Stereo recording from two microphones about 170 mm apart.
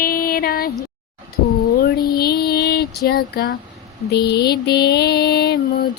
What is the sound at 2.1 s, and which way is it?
Music, 65° left (ahead or behind).